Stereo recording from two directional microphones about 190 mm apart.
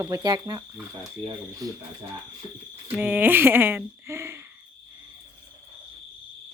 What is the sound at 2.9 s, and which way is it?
Speech, 10° right (ahead or behind).